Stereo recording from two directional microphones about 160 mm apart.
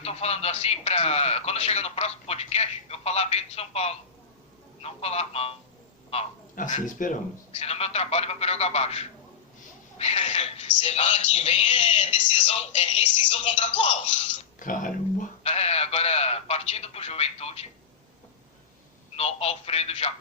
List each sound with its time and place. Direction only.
0.0 s speech: 40° left (ahead or behind)
6.6 s speech: 50° left (ahead or behind)
14.6 s speech: 55° left (ahead or behind)
15.4 s a sound: 40° left (ahead or behind)
19.1 s speech: 40° left (ahead or behind)